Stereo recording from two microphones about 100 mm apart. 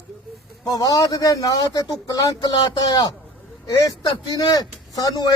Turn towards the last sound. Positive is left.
turn(degrees=40)  # may be behind; listen again after turning